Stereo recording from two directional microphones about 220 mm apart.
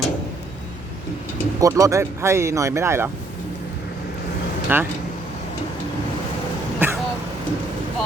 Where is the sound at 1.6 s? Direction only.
15° right (ahead or behind).